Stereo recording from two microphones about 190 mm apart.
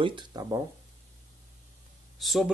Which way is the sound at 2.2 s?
Centre (ahead or behind).